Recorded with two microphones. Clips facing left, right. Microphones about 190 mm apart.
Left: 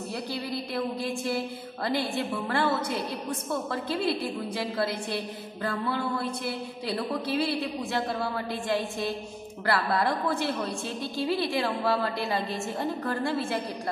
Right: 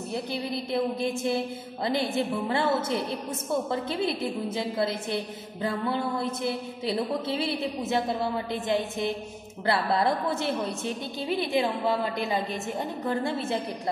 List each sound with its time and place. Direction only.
0.1 s a woman's voice: 20° right (ahead or behind)